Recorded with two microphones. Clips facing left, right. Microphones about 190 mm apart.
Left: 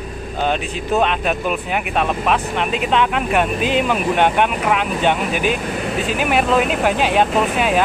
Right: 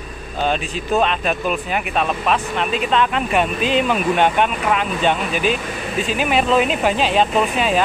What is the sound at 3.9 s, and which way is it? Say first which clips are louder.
Speech: even; 10° left (ahead or behind).